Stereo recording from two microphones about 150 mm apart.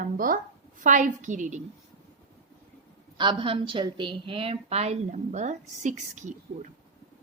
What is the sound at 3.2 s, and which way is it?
A woman's voice, 35° right (ahead or behind).